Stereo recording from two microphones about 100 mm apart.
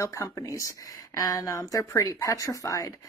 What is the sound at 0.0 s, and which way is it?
Speech, 30° left (ahead or behind).